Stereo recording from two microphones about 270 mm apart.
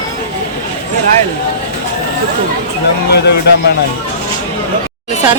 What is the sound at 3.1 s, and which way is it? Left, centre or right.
Speech, left.